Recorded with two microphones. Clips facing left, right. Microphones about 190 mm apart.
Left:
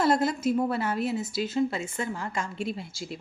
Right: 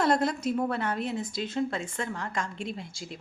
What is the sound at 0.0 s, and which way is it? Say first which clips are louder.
A woman's voice: left 2 dB; 5° left (ahead or behind).